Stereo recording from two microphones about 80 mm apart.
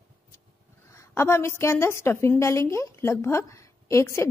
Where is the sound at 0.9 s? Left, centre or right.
Left.